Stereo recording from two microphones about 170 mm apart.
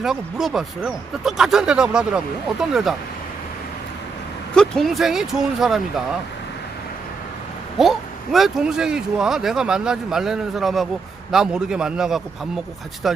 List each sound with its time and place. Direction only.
0.0 s speech: centre (ahead or behind)
4.5 s speech: 5° left (ahead or behind)
7.8 s speech: centre (ahead or behind)